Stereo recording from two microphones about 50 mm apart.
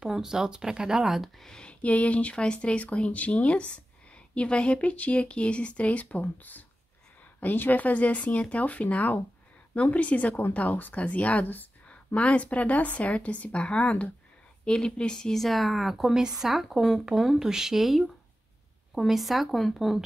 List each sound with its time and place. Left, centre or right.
0.0 s speech: centre
1.4 s speech: centre
15.3 s speech: centre